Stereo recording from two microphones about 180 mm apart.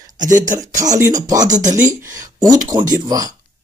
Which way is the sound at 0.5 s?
20° right (ahead or behind).